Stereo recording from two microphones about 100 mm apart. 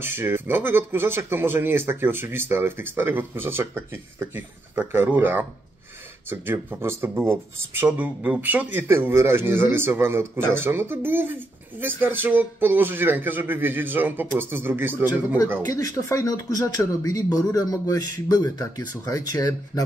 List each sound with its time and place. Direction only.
0.0 s speech: 25° right (ahead or behind)
15.6 s speech: 35° left (ahead or behind)